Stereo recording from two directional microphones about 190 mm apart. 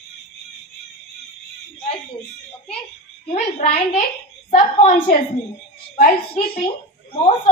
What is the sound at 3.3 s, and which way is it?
A woman's voice, 35° left (ahead or behind).